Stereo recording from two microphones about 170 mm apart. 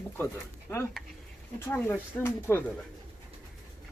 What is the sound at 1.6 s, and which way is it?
Speech, 15° left (ahead or behind).